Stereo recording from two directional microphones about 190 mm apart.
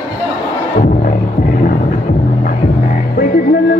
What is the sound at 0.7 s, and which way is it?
Music, 45° left (ahead or behind).